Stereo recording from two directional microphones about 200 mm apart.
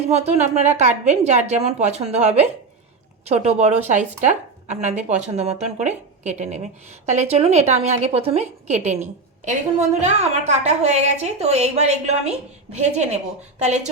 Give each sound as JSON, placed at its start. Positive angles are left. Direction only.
{"t": 0.1, "sound": "a woman's voice", "side_deg": -35}